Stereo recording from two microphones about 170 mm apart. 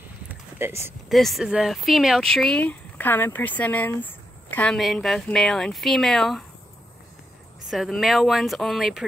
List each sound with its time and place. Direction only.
0.3 s a sound: 15° right (ahead or behind)
1.0 s speech: centre (ahead or behind)
7.7 s speech: centre (ahead or behind)